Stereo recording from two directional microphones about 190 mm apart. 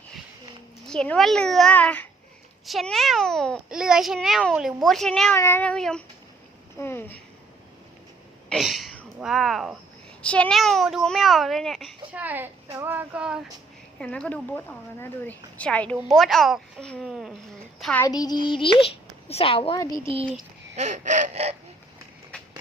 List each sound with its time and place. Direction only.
0.9 s a child's voice: 5° left (ahead or behind)
8.4 s a sound: centre (ahead or behind)
10.2 s a child's voice: 5° left (ahead or behind); by 12.5 s 10° right (ahead or behind)
12.7 s child singing: 10° right (ahead or behind)
14.0 s a woman's voice: 5° left (ahead or behind)
18.0 s a child's voice: 20° left (ahead or behind)
20.7 s a sound: 40° right (ahead or behind)